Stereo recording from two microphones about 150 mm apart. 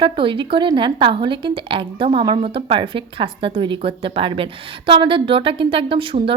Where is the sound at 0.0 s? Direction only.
35° right (ahead or behind).